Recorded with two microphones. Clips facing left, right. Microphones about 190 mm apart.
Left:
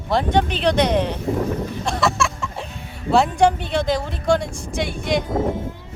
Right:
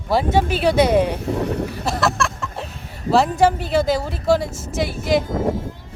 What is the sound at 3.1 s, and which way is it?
A woman's voice, centre (ahead or behind).